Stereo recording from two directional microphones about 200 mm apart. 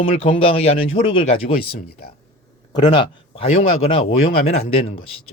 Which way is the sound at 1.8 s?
50° left (ahead or behind).